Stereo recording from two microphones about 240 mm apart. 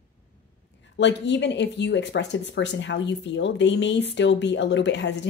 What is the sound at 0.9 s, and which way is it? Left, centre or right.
Speech, left.